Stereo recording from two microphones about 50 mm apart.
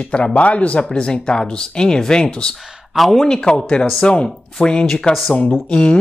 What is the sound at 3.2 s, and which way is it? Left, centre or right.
Speech, centre.